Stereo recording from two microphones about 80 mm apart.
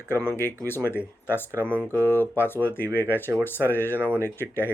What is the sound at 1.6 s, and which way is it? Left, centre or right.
Speech, centre.